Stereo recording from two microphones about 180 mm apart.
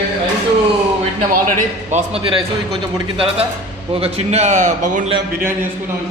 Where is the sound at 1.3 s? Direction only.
45° right (ahead or behind).